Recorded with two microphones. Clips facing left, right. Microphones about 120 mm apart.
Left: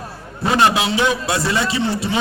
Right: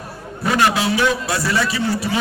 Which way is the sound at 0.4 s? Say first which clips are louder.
Left 1 dB; 25° left (ahead or behind).